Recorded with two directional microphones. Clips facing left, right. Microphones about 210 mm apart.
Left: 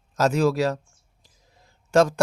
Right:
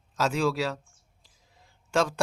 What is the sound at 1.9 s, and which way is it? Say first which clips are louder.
Speech: left 7 dB; 45° left (ahead or behind).